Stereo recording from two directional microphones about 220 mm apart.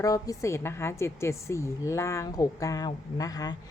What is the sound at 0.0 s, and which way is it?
A woman's voice, 15° left (ahead or behind).